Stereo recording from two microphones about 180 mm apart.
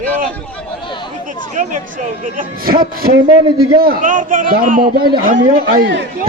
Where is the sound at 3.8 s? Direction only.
50° right (ahead or behind).